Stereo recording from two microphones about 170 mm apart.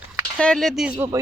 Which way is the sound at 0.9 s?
15° right (ahead or behind).